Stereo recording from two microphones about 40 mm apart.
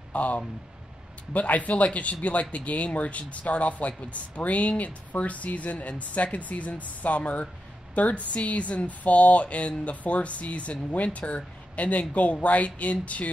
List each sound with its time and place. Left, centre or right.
0.1 s a woman's voice: left